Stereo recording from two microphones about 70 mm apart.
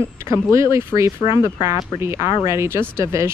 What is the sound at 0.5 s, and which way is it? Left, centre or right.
Speech, right.